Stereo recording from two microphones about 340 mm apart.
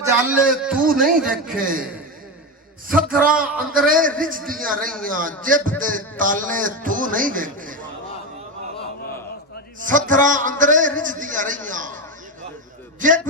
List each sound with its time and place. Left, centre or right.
0.0 s a sound: centre
0.6 s a man's voice: centre
0.9 s a man's voice: right
2.9 s a man's voice: right
9.8 s a man's voice: right
13.0 s a man's voice: right